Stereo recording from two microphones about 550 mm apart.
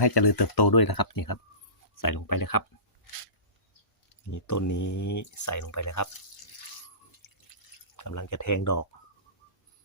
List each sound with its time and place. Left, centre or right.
0.0 s speech: left
4.3 s speech: left
7.2 s drip: left
7.9 s speech: left